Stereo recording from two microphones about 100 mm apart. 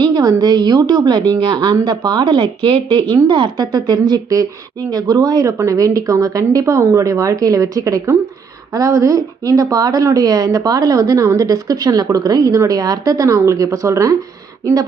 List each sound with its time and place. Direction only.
0.0 s a woman's voice: 40° right (ahead or behind)